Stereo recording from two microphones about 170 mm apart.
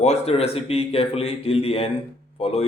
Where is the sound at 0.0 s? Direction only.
40° left (ahead or behind).